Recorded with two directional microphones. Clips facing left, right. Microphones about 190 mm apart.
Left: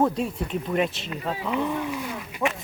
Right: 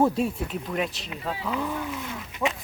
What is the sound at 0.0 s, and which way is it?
Speech, 5° right (ahead or behind).